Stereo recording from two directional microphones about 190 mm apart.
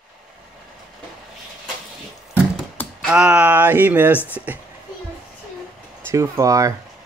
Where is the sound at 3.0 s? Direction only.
5° right (ahead or behind).